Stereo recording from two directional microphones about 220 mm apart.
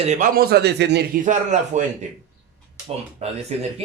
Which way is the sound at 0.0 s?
35° right (ahead or behind).